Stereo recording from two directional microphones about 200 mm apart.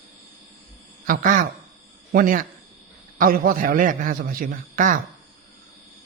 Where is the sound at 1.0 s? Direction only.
40° right (ahead or behind).